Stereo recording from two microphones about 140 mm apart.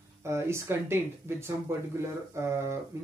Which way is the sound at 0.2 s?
20° right (ahead or behind).